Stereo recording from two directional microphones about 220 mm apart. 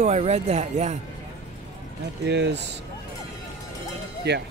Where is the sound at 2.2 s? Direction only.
50° right (ahead or behind).